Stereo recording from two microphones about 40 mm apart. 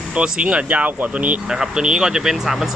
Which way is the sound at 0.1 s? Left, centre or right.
Right.